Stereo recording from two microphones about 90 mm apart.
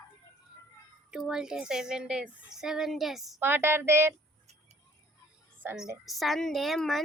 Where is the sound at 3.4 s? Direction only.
25° right (ahead or behind).